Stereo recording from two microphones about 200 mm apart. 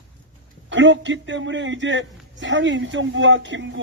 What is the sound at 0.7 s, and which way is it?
A man's voice, 65° right (ahead or behind).